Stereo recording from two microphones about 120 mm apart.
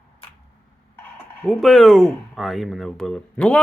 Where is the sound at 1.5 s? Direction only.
Centre (ahead or behind).